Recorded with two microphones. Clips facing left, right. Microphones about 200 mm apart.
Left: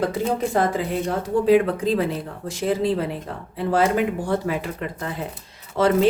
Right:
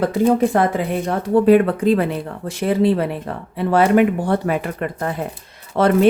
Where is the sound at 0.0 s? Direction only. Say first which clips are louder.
Right 7 dB; 60° right (ahead or behind).